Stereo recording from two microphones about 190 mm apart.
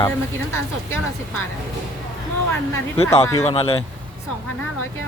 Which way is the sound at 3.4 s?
30° left (ahead or behind).